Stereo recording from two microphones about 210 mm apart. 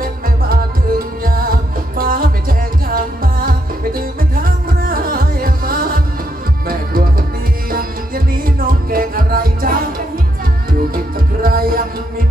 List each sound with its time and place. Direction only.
0.9 s music: 45° right (ahead or behind)
4.4 s music: 45° right (ahead or behind)
7.7 s music: 45° right (ahead or behind)
11.4 s music: 45° right (ahead or behind)